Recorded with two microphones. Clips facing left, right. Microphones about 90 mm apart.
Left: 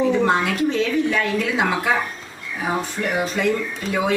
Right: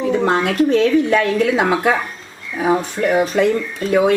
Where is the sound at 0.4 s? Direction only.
55° right (ahead or behind).